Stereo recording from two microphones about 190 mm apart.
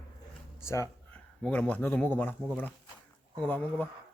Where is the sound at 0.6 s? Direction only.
15° left (ahead or behind).